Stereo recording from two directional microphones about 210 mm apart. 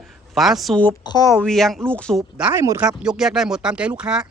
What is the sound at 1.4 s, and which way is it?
Speech, centre (ahead or behind).